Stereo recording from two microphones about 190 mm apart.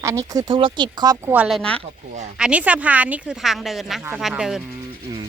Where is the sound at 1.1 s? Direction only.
10° right (ahead or behind).